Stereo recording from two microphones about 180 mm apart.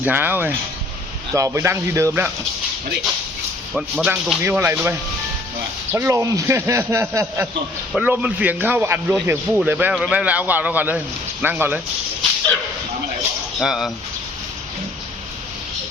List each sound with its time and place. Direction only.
0.0 s a man's voice: 10° right (ahead or behind)
3.8 s a man's voice: 5° right (ahead or behind)
13.6 s speech: centre (ahead or behind)